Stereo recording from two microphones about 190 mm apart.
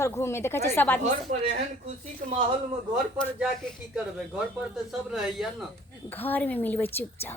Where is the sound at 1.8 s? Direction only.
35° right (ahead or behind).